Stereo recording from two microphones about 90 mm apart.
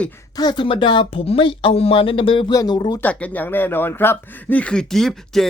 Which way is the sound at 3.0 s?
15° left (ahead or behind).